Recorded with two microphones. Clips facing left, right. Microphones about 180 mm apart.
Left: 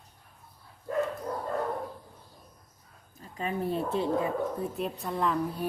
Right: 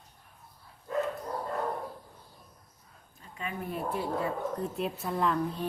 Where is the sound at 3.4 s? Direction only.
30° left (ahead or behind).